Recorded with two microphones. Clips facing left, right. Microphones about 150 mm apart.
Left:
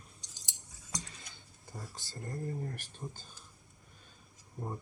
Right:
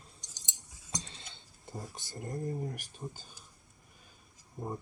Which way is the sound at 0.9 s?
25° right (ahead or behind).